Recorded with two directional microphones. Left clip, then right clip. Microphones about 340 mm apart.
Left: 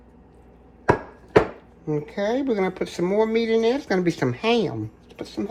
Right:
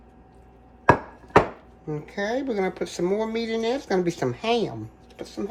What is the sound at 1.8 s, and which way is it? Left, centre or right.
Speech, centre.